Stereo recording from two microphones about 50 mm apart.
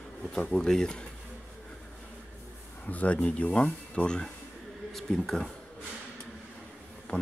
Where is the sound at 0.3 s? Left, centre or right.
Centre.